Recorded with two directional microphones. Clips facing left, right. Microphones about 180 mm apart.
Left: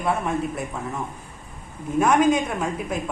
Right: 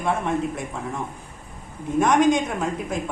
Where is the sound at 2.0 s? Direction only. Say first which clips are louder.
Even; 5° left (ahead or behind).